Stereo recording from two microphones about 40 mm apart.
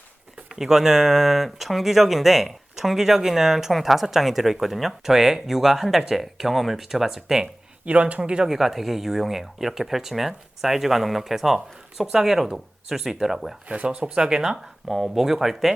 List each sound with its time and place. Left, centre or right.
0.4 s speech: centre
7.9 s speech: right
8.4 s speech: centre
13.7 s speech: right
14.2 s speech: centre
14.6 s speech: centre